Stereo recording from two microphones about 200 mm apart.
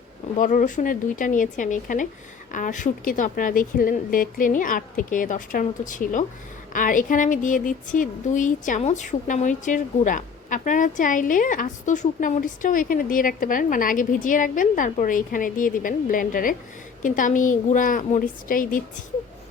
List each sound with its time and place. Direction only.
0.3 s a woman's voice: 40° left (ahead or behind)